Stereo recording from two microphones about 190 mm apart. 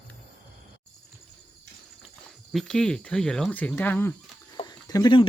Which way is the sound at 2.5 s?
5° left (ahead or behind).